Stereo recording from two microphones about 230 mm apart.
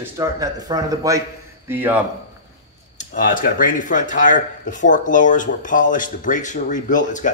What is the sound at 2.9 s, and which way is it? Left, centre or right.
Speech, left.